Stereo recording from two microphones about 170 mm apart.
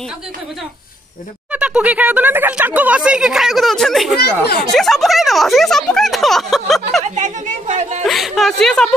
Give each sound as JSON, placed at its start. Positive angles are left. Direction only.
{"t": 1.5, "sound": "speech", "side_deg": -5}
{"t": 7.2, "sound": "speech", "side_deg": -45}
{"t": 8.0, "sound": "speech", "side_deg": 0}